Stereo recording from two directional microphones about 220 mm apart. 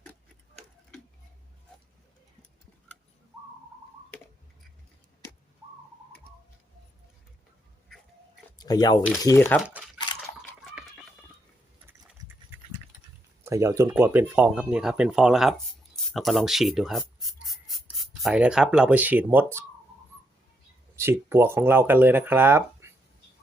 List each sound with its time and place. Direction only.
8.5 s speech: 20° left (ahead or behind)
12.2 s a sound: 20° right (ahead or behind)
13.4 s speech: 15° right (ahead or behind)
20.9 s speech: 10° right (ahead or behind)